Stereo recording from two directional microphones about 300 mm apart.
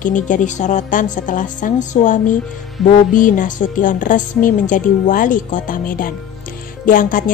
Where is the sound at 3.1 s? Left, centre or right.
Left.